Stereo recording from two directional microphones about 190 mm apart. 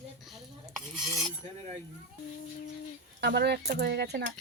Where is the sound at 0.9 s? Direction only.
Centre (ahead or behind).